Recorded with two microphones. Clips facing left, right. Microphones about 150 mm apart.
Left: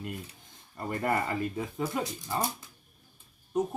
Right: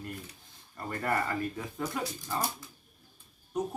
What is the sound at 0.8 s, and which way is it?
Speech, 20° left (ahead or behind).